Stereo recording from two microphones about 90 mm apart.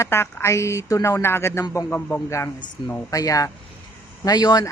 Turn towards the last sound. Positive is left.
turn(degrees=50)  # may be behind; listen again after turning